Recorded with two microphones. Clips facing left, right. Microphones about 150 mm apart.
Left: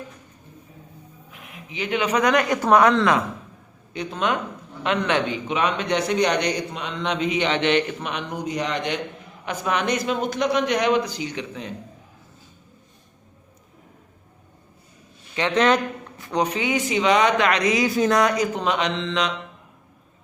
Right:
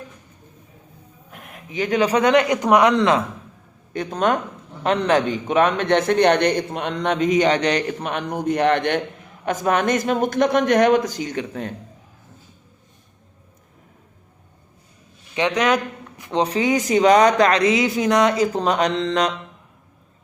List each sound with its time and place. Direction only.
1.3 s a man's voice: 45° right (ahead or behind); by 3.2 s 20° right (ahead or behind)
3.9 s a man's voice: 45° right (ahead or behind)
9.5 s a man's voice: 45° right (ahead or behind)
15.4 s speech: 15° right (ahead or behind); by 19.3 s 40° right (ahead or behind)